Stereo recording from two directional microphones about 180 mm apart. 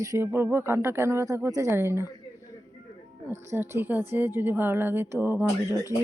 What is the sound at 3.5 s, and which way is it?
Speech, 10° right (ahead or behind).